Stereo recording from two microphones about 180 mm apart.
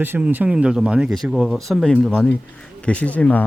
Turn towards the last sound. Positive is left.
turn(degrees=10)  # may be behind; listen again after turning